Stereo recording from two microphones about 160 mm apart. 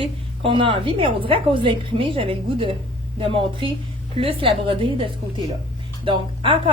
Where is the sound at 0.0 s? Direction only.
35° right (ahead or behind).